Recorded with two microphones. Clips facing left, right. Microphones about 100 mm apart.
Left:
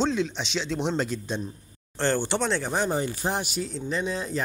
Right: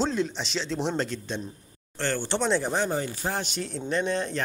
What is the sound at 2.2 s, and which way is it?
Speech, centre (ahead or behind).